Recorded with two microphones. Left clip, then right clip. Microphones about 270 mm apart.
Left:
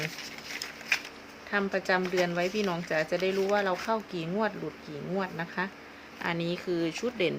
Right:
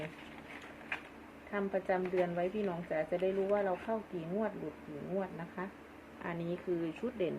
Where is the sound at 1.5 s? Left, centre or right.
Left.